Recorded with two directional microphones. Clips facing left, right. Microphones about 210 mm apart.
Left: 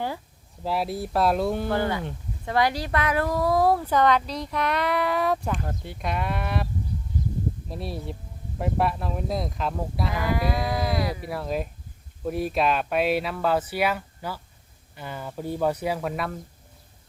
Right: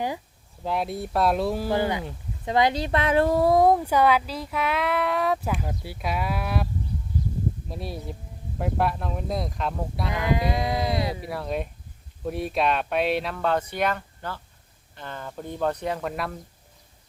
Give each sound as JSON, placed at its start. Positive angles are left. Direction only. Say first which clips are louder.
{"t": 0.6, "sound": "speech", "louder": "even", "side_deg": 0}
{"t": 1.7, "sound": "speech", "louder": "right 1 dB", "side_deg": -15}
{"t": 7.7, "sound": "speech", "louder": "left 1 dB", "side_deg": 0}
{"t": 10.2, "sound": "speech", "louder": "right 2 dB", "side_deg": -20}
{"t": 11.2, "sound": "speech", "louder": "left 1 dB", "side_deg": 0}